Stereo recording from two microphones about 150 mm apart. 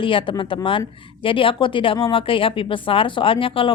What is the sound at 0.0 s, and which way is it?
Speech, 35° left (ahead or behind).